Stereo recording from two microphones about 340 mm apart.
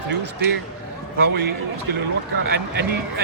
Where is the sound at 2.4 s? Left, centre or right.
Right.